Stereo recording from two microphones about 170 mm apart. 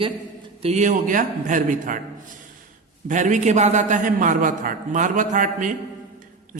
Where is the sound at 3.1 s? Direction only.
45° right (ahead or behind).